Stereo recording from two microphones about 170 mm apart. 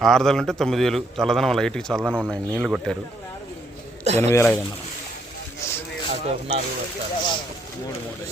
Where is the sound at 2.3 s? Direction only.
5° left (ahead or behind).